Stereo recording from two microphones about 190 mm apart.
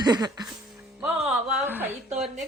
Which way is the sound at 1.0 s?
5° right (ahead or behind).